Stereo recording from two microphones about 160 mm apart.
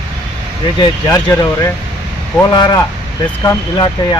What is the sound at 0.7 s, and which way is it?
Speech, 25° left (ahead or behind).